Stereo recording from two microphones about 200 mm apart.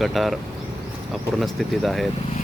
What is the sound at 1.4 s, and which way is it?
Speech, centre (ahead or behind).